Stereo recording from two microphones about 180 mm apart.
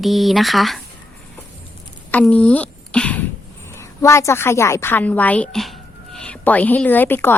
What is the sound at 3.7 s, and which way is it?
A woman's voice, 15° left (ahead or behind).